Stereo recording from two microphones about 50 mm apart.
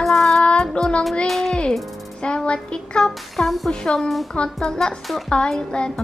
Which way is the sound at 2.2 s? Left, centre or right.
Left.